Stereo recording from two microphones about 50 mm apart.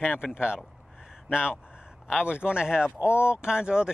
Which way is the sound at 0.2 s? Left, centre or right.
Centre.